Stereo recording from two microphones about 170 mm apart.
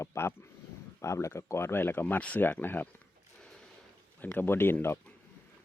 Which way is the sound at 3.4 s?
5° left (ahead or behind).